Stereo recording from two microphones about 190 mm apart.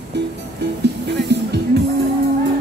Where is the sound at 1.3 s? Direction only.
65° right (ahead or behind).